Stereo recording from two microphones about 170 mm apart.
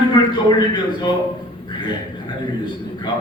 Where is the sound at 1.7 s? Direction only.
25° left (ahead or behind).